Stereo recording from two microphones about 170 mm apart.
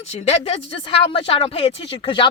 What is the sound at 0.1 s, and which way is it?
Speech, 35° left (ahead or behind).